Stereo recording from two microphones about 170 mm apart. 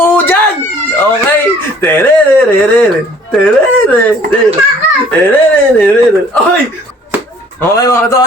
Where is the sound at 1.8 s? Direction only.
10° left (ahead or behind).